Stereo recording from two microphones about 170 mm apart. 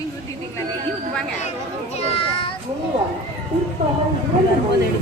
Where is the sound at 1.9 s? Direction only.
35° left (ahead or behind).